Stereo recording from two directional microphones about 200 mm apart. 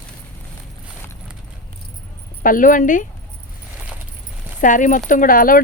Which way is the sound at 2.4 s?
45° left (ahead or behind).